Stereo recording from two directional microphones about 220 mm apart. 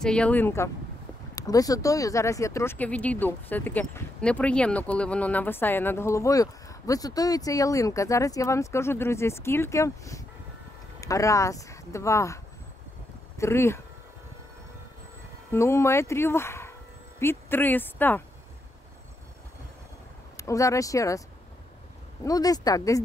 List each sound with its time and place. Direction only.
0.0 s speech: 5° left (ahead or behind)
13.4 s speech: 10° left (ahead or behind)
15.5 s speech: 10° left (ahead or behind)
20.3 s speech: 15° left (ahead or behind)
22.2 s speech: 15° left (ahead or behind)